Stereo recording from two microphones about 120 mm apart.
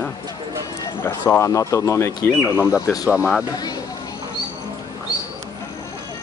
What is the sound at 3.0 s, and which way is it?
Speech, 5° right (ahead or behind).